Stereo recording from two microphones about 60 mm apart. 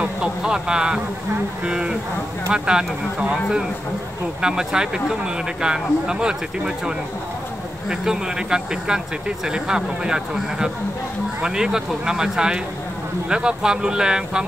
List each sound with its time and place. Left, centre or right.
0.0 s speech: centre
7.9 s speech: centre